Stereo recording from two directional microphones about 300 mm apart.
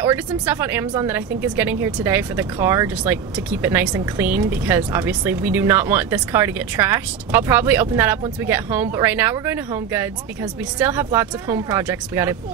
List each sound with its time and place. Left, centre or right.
0.0 s a woman's voice: centre